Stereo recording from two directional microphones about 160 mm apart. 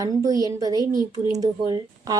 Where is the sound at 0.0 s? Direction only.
20° right (ahead or behind).